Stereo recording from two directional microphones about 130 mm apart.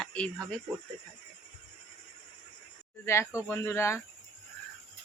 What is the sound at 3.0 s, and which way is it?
Speech, 20° left (ahead or behind).